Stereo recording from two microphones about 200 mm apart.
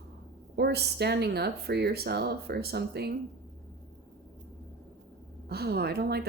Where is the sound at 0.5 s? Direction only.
55° right (ahead or behind).